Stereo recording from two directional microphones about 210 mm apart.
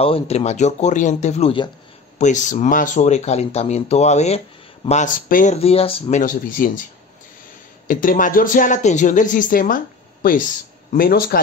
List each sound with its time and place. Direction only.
0.0 s speech: 30° left (ahead or behind)
7.9 s speech: 40° left (ahead or behind)
10.9 s speech: 45° left (ahead or behind)